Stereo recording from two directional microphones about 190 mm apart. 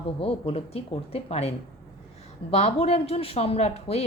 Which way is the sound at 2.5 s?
30° left (ahead or behind).